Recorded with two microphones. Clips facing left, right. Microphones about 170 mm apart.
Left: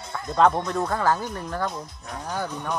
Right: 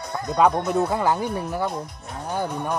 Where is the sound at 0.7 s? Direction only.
10° right (ahead or behind).